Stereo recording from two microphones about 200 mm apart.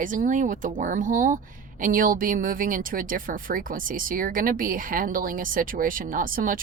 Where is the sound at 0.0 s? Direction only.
40° right (ahead or behind).